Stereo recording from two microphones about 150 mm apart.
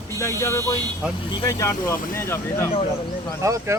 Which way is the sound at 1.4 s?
25° left (ahead or behind).